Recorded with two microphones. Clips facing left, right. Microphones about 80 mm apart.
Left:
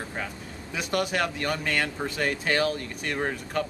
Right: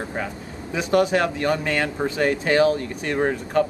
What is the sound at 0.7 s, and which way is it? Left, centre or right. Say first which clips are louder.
Speech: right 8 dB; centre.